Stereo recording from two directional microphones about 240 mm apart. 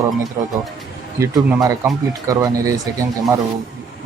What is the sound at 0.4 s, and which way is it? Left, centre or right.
Speech, centre.